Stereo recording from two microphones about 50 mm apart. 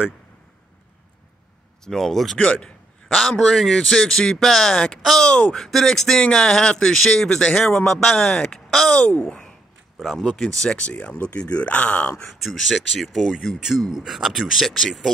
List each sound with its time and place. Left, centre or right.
1.9 s speech: centre
2.3 s a sound: left
3.2 s speech: centre
5.6 s speech: centre
10.3 s speech: centre
10.9 s speech: left
12.3 s speech: centre